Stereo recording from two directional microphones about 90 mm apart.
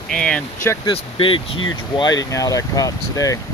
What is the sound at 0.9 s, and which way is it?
Speech, 80° left.